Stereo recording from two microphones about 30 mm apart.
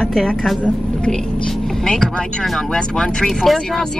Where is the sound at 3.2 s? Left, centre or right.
Centre.